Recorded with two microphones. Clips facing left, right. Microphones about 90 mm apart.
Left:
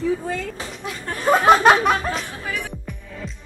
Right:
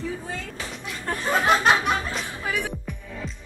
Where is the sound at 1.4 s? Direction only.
55° left (ahead or behind).